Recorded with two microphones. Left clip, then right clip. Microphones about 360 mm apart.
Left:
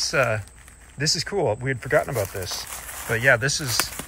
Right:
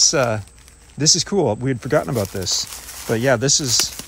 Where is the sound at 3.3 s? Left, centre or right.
Centre.